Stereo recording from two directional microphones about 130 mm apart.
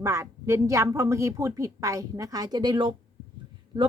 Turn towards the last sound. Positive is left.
turn(degrees=-35)  # may be behind; listen again after turning